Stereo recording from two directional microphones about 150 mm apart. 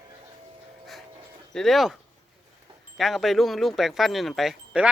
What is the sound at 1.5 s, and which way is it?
Speech, centre (ahead or behind).